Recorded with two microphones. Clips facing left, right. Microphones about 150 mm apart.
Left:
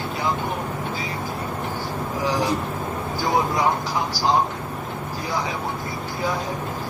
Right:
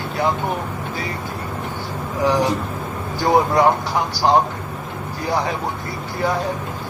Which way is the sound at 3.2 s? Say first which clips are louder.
Right 6 dB; 60° right (ahead or behind).